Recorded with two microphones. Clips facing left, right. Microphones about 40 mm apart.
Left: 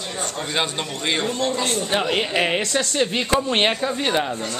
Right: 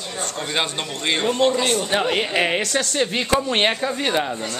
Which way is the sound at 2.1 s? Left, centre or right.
Centre.